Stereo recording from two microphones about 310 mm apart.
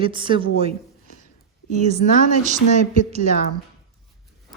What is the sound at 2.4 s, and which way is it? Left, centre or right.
Speech, right.